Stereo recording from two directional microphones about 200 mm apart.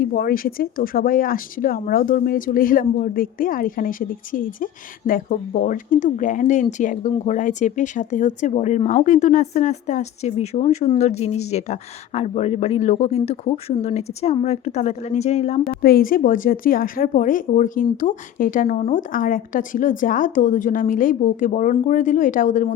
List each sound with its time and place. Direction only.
0.0 s speech: 45° left (ahead or behind)
15.8 s speech: 50° left (ahead or behind)